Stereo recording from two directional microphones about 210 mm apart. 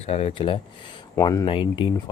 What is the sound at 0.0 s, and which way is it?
Speech, 30° left (ahead or behind).